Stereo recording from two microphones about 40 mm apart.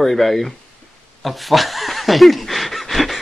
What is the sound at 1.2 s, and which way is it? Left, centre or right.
Snicker, centre.